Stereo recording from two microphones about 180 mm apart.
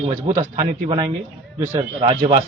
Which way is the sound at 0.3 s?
35° right (ahead or behind).